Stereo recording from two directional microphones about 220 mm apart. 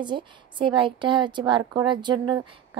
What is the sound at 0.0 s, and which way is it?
A woman's voice, 20° right (ahead or behind).